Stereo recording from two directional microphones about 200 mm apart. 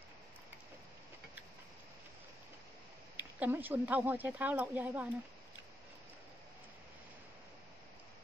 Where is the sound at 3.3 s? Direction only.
10° right (ahead or behind).